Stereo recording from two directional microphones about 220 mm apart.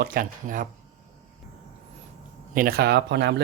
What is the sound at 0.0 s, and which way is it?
Speech, 40° right (ahead or behind).